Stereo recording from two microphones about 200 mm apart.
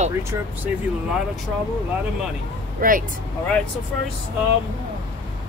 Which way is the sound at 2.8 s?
45° right (ahead or behind).